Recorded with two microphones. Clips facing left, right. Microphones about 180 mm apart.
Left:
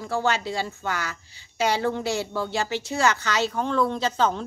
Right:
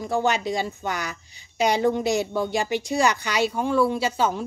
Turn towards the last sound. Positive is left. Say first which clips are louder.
# even
turn(degrees=-10)  # may be behind; listen again after turning